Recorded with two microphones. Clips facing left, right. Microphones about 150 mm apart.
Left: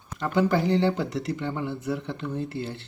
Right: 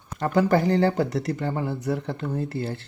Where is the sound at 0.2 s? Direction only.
40° right (ahead or behind).